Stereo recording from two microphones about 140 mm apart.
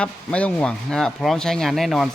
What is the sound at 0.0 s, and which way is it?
A man's voice, 10° left (ahead or behind).